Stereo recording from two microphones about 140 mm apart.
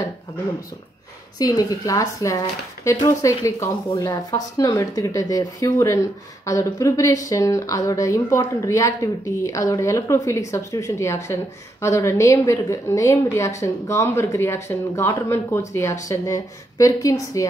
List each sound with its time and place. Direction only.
1.4 s speech: 25° left (ahead or behind)